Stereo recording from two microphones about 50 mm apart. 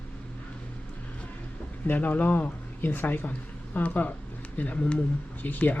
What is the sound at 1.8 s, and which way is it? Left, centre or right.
Speech, left.